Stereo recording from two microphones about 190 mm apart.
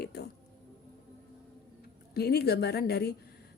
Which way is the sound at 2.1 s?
60° left (ahead or behind).